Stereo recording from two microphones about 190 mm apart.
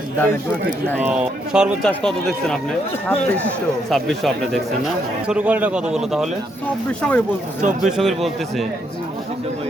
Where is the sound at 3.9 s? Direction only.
Centre (ahead or behind).